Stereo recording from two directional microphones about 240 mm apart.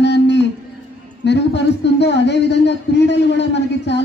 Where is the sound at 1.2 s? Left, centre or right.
Left.